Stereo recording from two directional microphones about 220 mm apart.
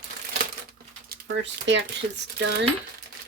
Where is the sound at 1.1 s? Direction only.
55° right (ahead or behind).